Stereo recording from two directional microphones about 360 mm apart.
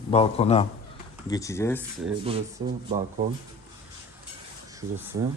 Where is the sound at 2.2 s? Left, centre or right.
Centre.